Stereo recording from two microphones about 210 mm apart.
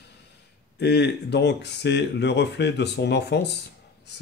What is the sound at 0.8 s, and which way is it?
Speech, 55° left (ahead or behind).